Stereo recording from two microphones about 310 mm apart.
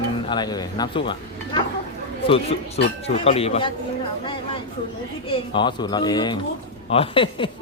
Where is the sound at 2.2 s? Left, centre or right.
Centre.